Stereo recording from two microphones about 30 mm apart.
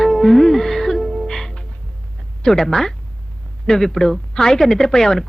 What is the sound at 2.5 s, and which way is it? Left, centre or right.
Speech, centre.